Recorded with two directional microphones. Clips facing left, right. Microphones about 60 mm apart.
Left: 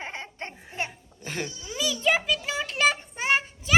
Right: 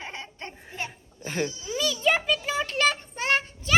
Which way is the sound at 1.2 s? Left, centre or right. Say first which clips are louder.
Right 4 dB; centre.